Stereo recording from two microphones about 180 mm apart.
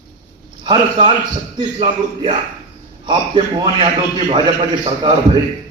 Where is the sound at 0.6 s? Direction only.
25° right (ahead or behind).